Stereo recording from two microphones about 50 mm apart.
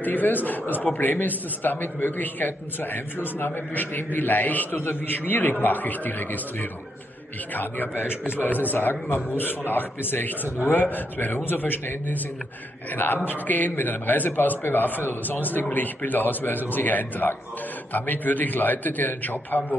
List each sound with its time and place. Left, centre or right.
0.0 s a man's voice: left